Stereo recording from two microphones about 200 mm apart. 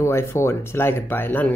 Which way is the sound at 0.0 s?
15° left (ahead or behind).